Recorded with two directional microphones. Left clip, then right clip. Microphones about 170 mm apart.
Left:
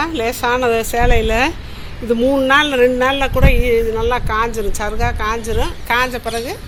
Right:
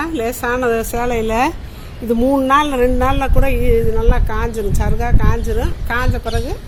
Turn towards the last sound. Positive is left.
turn(degrees=-40)  # may be behind; listen again after turning